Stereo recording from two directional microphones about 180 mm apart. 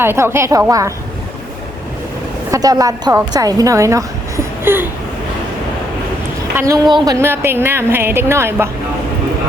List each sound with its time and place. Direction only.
0.0 s speech: 15° right (ahead or behind)
2.5 s a woman's voice: 20° right (ahead or behind)
6.8 s speech: 25° right (ahead or behind)